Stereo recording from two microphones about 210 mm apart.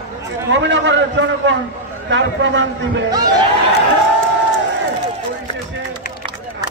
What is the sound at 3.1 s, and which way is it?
Speech, 20° right (ahead or behind).